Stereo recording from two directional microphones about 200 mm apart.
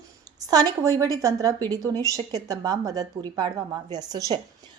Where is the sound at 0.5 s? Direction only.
20° right (ahead or behind).